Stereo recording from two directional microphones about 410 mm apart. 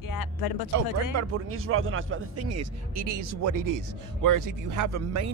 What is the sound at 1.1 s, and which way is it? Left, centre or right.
Speech, right.